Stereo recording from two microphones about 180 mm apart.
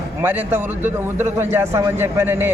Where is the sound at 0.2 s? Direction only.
10° right (ahead or behind).